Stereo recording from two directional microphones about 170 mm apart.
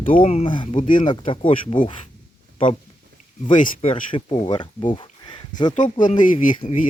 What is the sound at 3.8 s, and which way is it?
Speech, 30° left (ahead or behind).